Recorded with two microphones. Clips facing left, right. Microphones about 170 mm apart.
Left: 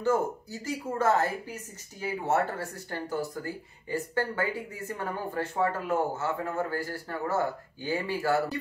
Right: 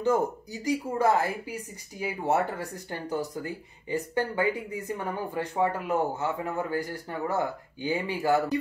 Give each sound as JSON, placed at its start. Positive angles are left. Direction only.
{"t": 0.0, "sound": "speech", "side_deg": -15}